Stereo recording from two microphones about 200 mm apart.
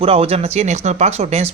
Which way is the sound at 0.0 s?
30° right (ahead or behind).